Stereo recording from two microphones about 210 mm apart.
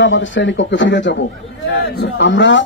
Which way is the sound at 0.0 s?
60° left (ahead or behind).